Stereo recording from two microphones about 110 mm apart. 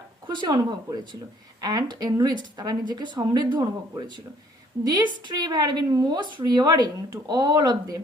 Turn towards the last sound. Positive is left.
turn(degrees=-40)  # may be behind; listen again after turning